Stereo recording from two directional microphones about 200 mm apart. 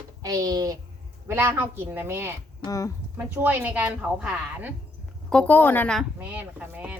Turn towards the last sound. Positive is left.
turn(degrees=-10)  # may be behind; listen again after turning